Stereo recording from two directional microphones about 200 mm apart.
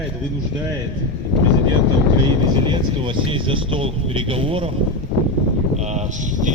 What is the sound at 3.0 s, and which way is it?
Speech, 25° right (ahead or behind).